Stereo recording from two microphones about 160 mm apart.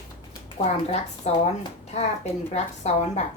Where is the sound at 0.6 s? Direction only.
40° left (ahead or behind).